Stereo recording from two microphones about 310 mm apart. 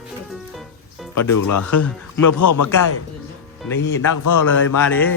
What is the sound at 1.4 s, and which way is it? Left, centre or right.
Speech, left.